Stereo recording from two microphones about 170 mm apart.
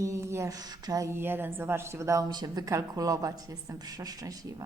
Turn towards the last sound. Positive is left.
turn(degrees=-20)  # may be behind; listen again after turning